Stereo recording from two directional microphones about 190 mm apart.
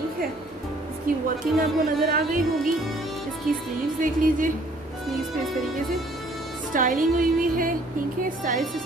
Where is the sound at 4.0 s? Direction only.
45° right (ahead or behind).